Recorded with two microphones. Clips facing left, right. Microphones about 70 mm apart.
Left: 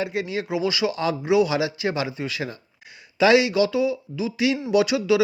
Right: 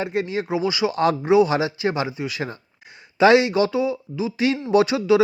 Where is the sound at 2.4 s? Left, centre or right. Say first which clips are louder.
Right 2 dB; right.